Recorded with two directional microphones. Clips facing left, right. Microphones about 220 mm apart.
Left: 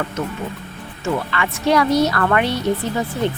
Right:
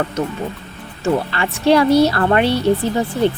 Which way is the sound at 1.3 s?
30° right (ahead or behind).